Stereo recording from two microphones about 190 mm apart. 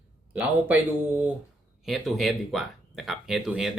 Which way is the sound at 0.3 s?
10° right (ahead or behind).